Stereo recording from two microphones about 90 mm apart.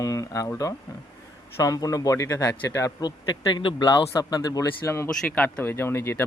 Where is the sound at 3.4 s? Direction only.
60° left (ahead or behind).